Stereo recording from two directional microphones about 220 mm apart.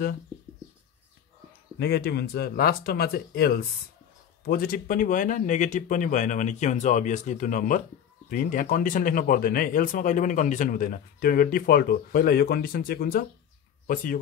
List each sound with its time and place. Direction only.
1.8 s speech: 45° left (ahead or behind)